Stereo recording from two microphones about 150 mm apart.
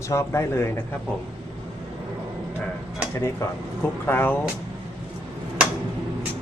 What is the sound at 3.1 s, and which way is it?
A man's voice, 20° left (ahead or behind).